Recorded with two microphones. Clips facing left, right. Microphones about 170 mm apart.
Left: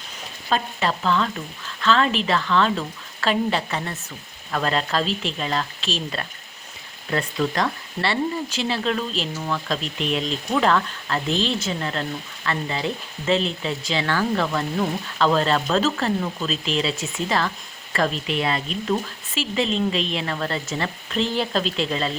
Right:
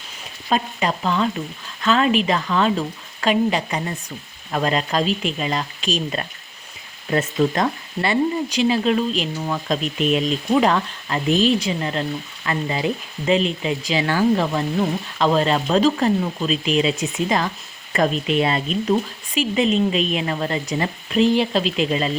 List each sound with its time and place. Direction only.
0.5 s speech: 15° right (ahead or behind)